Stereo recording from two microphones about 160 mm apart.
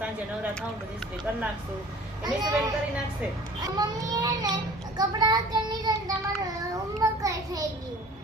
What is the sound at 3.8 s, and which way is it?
Child singing, 25° right (ahead or behind).